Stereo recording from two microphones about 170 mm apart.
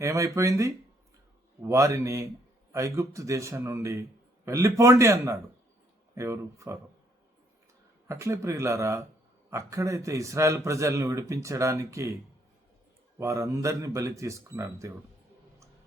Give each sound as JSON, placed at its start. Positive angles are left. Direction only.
{"t": 0.0, "sound": "a man's voice", "side_deg": -20}
{"t": 8.0, "sound": "a man's voice", "side_deg": -15}
{"t": 13.1, "sound": "a man's voice", "side_deg": -20}